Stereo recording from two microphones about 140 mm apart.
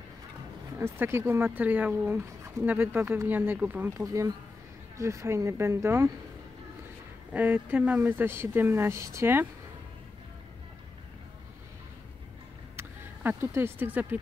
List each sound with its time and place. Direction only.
0.7 s speech: 15° right (ahead or behind)
4.0 s speech: 20° right (ahead or behind)
7.3 s speech: 10° right (ahead or behind)
12.7 s speech: 15° right (ahead or behind)